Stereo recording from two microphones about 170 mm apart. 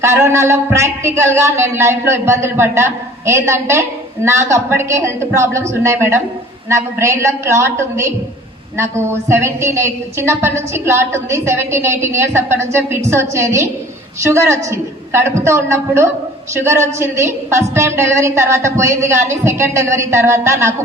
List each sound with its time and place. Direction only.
0.0 s speech: 15° right (ahead or behind)